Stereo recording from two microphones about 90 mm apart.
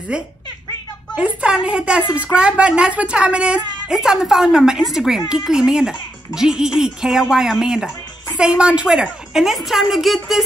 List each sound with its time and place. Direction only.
0.1 s a woman's voice: 10° right (ahead or behind)